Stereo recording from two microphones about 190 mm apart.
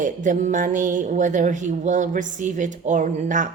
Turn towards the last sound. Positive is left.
turn(degrees=-40)  # may be behind; listen again after turning